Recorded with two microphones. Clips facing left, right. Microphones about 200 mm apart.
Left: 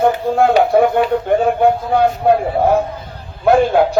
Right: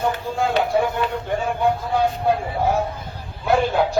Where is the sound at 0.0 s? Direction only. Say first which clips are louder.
Left 9 dB; 60° left (ahead or behind).